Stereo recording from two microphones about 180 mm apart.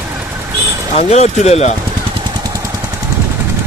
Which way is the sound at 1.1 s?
40° left (ahead or behind).